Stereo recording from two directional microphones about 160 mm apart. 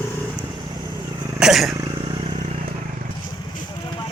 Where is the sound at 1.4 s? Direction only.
Centre (ahead or behind).